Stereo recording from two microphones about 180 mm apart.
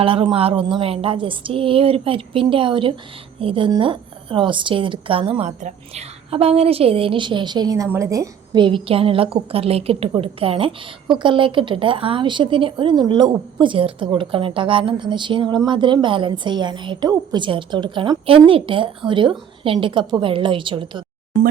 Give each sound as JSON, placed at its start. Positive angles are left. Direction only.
{"t": 0.0, "sound": "a woman's voice", "side_deg": -30}